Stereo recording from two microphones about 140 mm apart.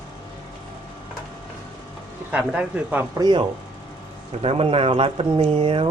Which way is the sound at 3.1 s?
30° right (ahead or behind).